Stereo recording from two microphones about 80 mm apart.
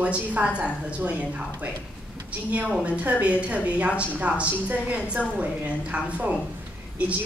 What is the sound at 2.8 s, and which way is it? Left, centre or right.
A woman's voice, centre.